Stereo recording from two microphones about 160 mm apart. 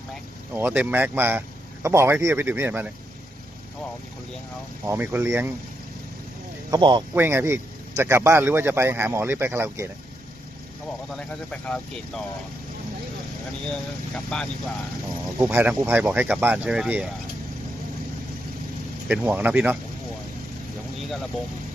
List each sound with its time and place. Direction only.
0.5 s speech: 10° right (ahead or behind)
4.9 s speech: 15° right (ahead or behind)
6.7 s speech: 30° right (ahead or behind)
7.1 s speech: 15° right (ahead or behind)
11.1 s speech: 5° left (ahead or behind)
14.3 s speech: 5° left (ahead or behind)
15.4 s speech: 10° right (ahead or behind)
19.0 s speech: 10° right (ahead or behind)